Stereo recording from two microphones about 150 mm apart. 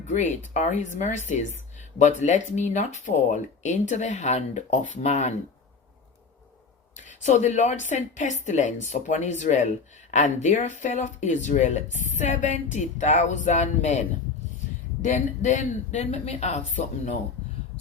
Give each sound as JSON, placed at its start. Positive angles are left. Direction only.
{"t": 0.1, "sound": "speech", "side_deg": 55}
{"t": 7.2, "sound": "speech", "side_deg": 55}
{"t": 15.0, "sound": "speech", "side_deg": 50}